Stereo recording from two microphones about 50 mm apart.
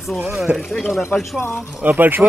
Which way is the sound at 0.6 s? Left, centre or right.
Centre.